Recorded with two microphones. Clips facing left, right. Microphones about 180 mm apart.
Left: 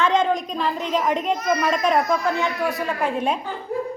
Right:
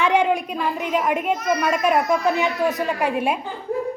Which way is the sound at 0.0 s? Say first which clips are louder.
Right 1 dB; 10° right (ahead or behind).